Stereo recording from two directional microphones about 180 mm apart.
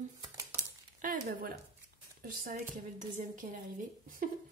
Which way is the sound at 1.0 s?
50° right (ahead or behind).